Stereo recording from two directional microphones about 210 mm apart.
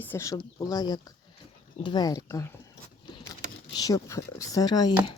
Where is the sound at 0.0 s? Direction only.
10° left (ahead or behind).